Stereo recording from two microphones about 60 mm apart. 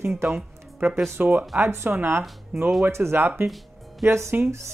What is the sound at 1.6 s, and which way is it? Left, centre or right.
Speech, right.